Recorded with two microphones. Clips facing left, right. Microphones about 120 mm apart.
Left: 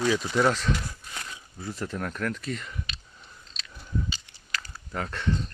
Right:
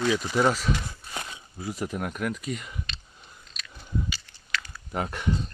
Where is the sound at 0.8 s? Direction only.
25° right (ahead or behind).